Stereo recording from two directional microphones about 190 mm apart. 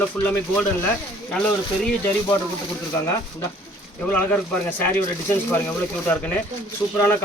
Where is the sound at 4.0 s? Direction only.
10° left (ahead or behind).